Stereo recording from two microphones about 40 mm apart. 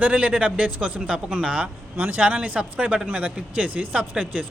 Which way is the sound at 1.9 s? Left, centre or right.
Right.